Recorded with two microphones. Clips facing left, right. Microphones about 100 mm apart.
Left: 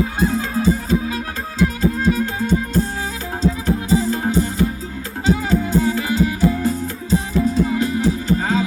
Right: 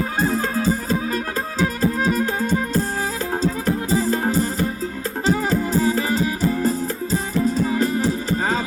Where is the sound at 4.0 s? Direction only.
40° right (ahead or behind).